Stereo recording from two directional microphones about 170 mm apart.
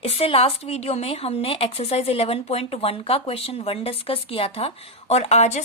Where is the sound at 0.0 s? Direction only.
35° left (ahead or behind).